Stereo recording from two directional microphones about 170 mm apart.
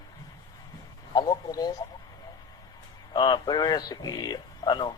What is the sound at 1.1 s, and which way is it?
Speech, 20° left (ahead or behind).